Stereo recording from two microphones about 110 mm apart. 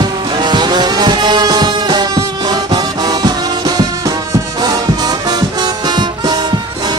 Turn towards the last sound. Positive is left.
turn(degrees=-40)  # may be behind; listen again after turning